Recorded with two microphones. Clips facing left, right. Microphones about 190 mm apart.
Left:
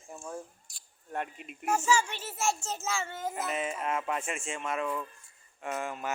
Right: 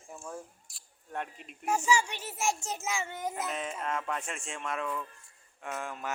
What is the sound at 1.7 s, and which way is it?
A child's voice, 15° right (ahead or behind).